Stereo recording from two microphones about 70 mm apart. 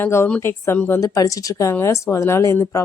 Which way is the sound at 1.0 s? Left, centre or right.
Left.